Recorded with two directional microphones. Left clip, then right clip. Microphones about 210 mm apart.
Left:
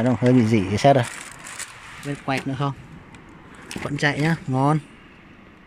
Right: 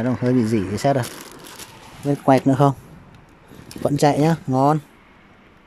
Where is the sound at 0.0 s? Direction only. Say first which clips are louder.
Left 1 dB; centre (ahead or behind).